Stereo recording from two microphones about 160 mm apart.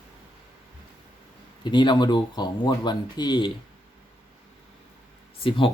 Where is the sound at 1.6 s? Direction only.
30° left (ahead or behind).